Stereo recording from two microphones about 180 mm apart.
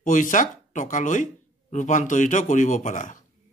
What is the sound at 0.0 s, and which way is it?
Speech, 45° left (ahead or behind).